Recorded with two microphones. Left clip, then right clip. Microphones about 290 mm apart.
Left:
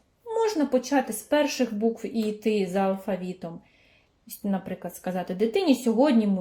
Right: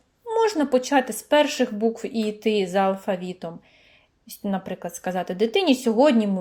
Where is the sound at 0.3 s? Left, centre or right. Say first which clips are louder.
Right 4 dB; right.